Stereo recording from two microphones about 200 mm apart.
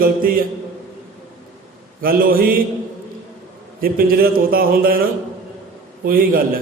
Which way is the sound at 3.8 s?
45° right (ahead or behind).